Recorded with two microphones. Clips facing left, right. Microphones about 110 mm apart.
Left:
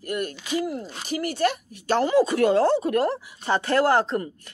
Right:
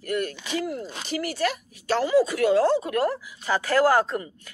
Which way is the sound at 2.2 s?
40° left (ahead or behind).